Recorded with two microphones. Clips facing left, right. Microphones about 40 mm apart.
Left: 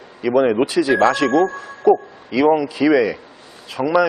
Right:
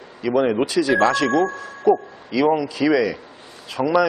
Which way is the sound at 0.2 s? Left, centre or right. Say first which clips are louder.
Left 3 dB; centre.